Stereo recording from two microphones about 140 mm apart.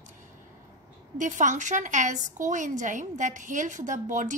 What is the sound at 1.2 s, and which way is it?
A woman's voice, 60° right (ahead or behind).